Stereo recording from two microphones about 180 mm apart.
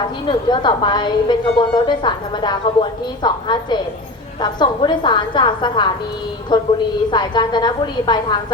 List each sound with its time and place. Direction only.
0.3 s a woman's voice: 25° left (ahead or behind)